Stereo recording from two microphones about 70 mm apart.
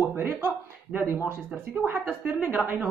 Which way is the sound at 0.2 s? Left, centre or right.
Right.